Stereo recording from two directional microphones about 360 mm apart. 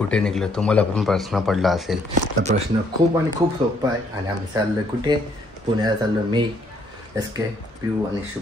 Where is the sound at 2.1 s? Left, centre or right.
Centre.